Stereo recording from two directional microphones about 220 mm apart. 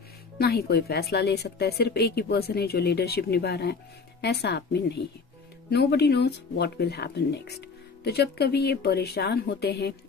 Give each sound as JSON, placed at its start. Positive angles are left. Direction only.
{"t": 0.4, "sound": "speech", "side_deg": 45}